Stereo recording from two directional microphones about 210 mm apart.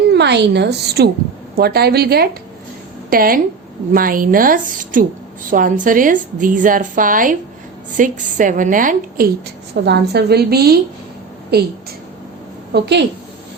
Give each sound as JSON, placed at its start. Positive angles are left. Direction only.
{"t": 0.1, "sound": "a woman's voice", "side_deg": -55}
{"t": 9.8, "sound": "a woman's voice", "side_deg": -50}
{"t": 12.7, "sound": "a woman's voice", "side_deg": -55}